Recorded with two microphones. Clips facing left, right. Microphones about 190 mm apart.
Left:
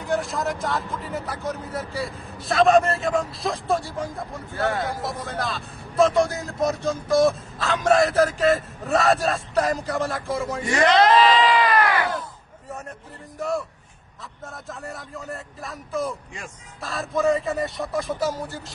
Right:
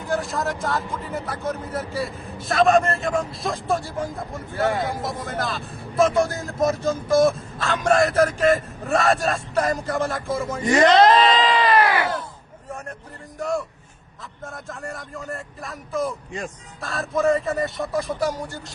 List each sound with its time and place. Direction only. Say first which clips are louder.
0.0 s speech: even; centre (ahead or behind)
11.0 s a sound: right 1 dB; 25° right (ahead or behind)
13.4 s speech: right 1 dB; centre (ahead or behind)